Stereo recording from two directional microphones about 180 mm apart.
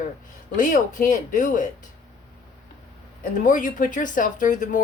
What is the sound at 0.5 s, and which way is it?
A woman's voice, 45° left (ahead or behind).